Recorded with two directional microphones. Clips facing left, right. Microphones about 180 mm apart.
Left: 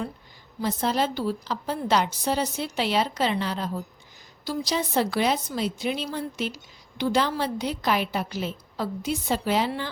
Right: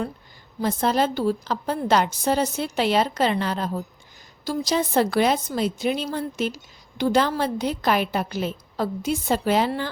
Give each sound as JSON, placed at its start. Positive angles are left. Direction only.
{"t": 0.6, "sound": "a woman's voice", "side_deg": -50}